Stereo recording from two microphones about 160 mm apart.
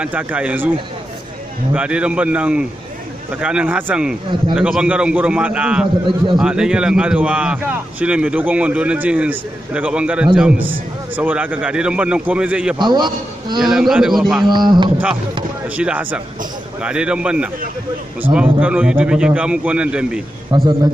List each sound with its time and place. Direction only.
0.0 s a man's voice: 10° right (ahead or behind)
1.7 s a man's voice: 5° right (ahead or behind)
12.7 s a man's voice: 30° right (ahead or behind)
13.6 s a man's voice: centre (ahead or behind)
14.5 s a man's voice: 25° right (ahead or behind)
15.7 s a man's voice: 10° right (ahead or behind)
20.5 s a man's voice: 30° right (ahead or behind)